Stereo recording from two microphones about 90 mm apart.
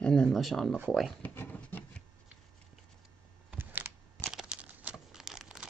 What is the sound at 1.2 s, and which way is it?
Speech, 20° left (ahead or behind).